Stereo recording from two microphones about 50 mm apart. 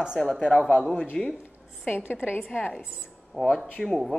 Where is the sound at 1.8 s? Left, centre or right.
Left.